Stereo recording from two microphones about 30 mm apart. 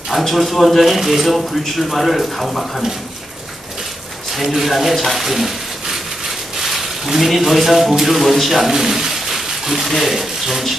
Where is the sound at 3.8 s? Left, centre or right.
Centre.